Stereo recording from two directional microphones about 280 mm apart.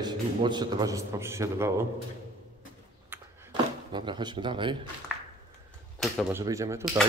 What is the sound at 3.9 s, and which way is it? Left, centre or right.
Speech, centre.